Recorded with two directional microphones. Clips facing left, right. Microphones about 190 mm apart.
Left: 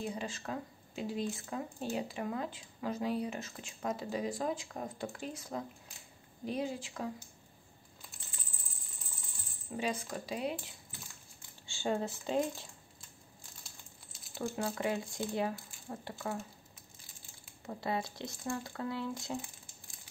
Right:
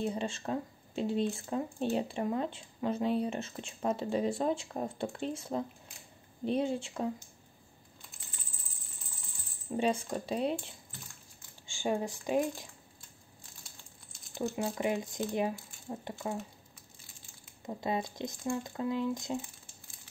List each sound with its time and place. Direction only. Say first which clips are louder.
0.0 s speech: right 5 dB; 30° right (ahead or behind)
9.8 s speech: right 6 dB; 30° right (ahead or behind)
11.6 s speech: right 2 dB; 15° right (ahead or behind)
14.3 s speech: right 3 dB; 15° right (ahead or behind)
17.6 s speech: right 2 dB; 20° right (ahead or behind)